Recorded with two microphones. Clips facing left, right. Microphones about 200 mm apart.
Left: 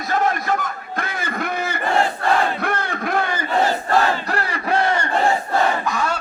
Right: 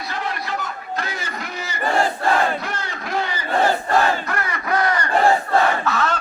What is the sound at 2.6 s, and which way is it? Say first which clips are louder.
Crowd: left 5 dB; 55° left (ahead or behind).